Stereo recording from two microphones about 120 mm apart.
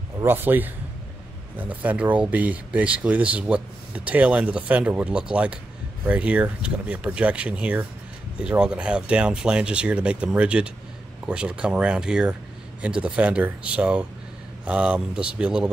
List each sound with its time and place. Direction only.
0.2 s speech: 15° right (ahead or behind)